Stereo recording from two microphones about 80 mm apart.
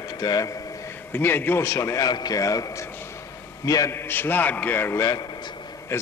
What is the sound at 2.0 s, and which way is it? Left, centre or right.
A man's voice, left.